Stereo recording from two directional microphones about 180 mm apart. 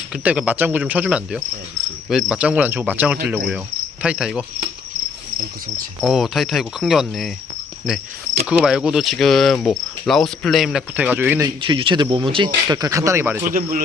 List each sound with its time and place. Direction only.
0.1 s speech: 5° right (ahead or behind)
4.0 s cricket: 5° right (ahead or behind)
6.0 s cricket: centre (ahead or behind)
11.4 s speech: 25° right (ahead or behind)
13.5 s speech: 50° right (ahead or behind)